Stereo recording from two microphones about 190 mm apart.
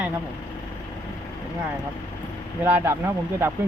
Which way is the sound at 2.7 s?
10° right (ahead or behind).